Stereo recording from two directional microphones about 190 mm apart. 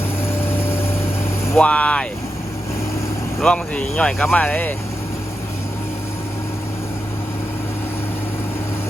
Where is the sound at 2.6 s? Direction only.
15° left (ahead or behind).